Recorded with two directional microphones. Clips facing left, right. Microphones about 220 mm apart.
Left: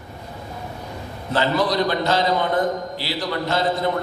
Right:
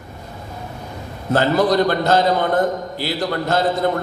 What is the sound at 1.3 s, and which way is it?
A man's voice, 50° right (ahead or behind).